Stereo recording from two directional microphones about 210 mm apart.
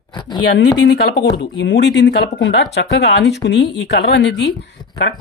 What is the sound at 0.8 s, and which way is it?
Speech, 55° left (ahead or behind).